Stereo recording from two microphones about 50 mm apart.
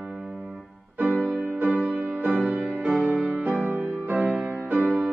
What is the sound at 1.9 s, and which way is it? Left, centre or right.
Music, right.